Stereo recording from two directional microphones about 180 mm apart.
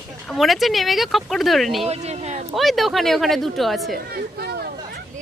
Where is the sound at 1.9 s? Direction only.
35° right (ahead or behind).